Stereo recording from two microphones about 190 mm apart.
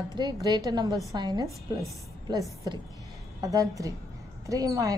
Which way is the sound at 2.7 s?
20° right (ahead or behind).